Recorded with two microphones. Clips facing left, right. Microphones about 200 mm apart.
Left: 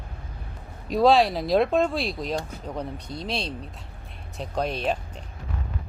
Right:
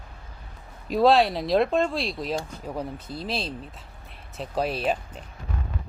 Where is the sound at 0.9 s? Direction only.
Centre (ahead or behind).